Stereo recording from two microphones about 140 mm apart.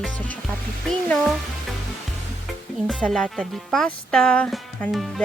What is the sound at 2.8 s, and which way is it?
Speech, 5° left (ahead or behind).